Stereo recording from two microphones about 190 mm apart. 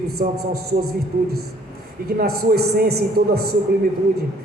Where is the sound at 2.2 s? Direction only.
55° right (ahead or behind).